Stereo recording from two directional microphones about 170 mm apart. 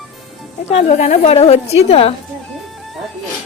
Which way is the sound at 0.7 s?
40° left (ahead or behind).